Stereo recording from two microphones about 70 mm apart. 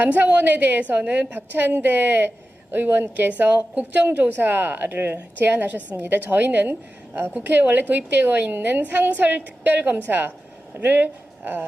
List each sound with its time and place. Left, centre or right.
0.0 s a woman's voice: right